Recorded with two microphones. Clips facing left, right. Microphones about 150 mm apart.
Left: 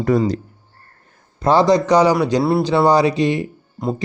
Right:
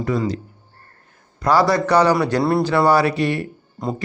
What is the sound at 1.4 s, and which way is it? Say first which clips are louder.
A man's voice: left 3 dB; 25° left (ahead or behind).